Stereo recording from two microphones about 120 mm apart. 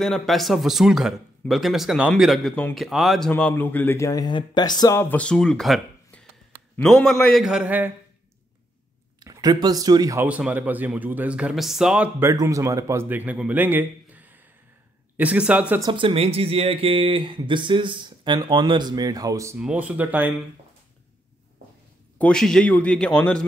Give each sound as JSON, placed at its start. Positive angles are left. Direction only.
{"t": 0.0, "sound": "speech", "side_deg": 0}
{"t": 3.3, "sound": "speech", "side_deg": 10}
{"t": 4.9, "sound": "speech", "side_deg": 15}
{"t": 7.4, "sound": "speech", "side_deg": -10}
{"t": 9.2, "sound": "speech", "side_deg": -30}
{"t": 10.2, "sound": "speech", "side_deg": -10}
{"t": 12.4, "sound": "speech", "side_deg": -25}
{"t": 13.1, "sound": "a man's voice", "side_deg": -15}
{"t": 15.9, "sound": "speech", "side_deg": -45}
{"t": 19.6, "sound": "speech", "side_deg": -10}
{"t": 22.2, "sound": "a man's voice", "side_deg": 5}